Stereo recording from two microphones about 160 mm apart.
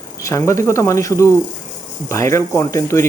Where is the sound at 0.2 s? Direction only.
20° left (ahead or behind).